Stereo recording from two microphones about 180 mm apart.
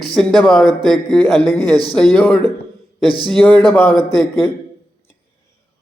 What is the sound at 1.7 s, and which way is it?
Speech, 20° right (ahead or behind).